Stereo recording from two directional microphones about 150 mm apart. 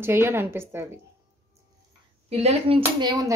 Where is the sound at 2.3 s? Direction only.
40° right (ahead or behind).